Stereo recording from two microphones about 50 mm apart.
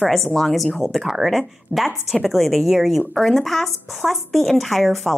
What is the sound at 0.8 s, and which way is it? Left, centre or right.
Speech, centre.